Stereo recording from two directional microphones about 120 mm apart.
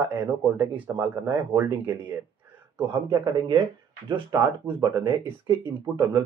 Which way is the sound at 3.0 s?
30° right (ahead or behind).